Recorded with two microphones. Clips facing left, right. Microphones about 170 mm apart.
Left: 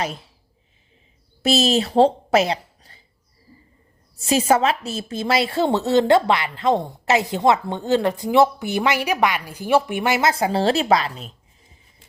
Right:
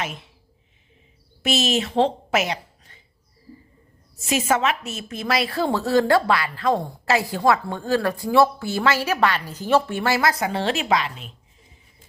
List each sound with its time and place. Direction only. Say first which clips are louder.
0.0 s a woman's voice: left 4 dB; 35° left (ahead or behind)
1.4 s speech: left 4 dB; 35° left (ahead or behind)
4.2 s a woman's voice: left 4 dB; 35° left (ahead or behind)